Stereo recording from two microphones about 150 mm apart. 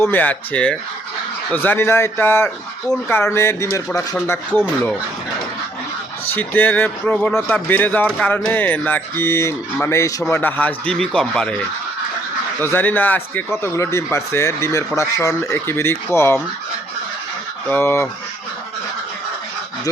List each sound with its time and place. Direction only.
0.0 s speech: 10° left (ahead or behind)
6.3 s speech: 10° left (ahead or behind)
12.5 s speech: 15° left (ahead or behind)
17.7 s speech: 15° left (ahead or behind)